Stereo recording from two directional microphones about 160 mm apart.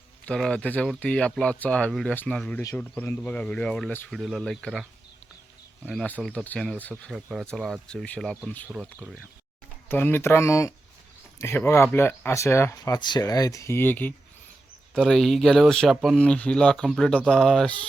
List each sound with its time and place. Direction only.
0.3 s speech: 5° left (ahead or behind)
9.9 s speech: 15° left (ahead or behind)